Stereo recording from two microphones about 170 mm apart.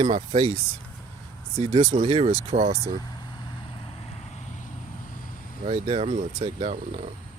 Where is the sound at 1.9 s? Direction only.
35° right (ahead or behind).